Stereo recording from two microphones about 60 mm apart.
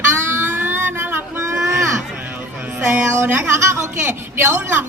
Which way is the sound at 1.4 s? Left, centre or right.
Right.